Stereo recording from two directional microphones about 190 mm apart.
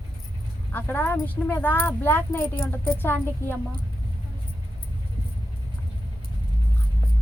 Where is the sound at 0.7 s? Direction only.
10° left (ahead or behind).